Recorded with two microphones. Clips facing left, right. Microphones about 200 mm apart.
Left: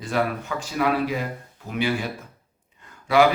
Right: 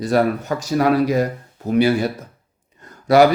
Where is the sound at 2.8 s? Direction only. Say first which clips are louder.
Right 6 dB; 40° right (ahead or behind).